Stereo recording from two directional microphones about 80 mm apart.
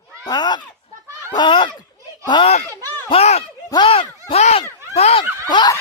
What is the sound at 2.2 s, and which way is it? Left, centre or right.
Speech, left.